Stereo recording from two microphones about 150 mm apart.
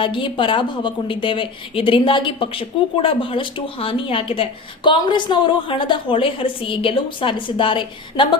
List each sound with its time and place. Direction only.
0.0 s a woman's voice: 35° left (ahead or behind)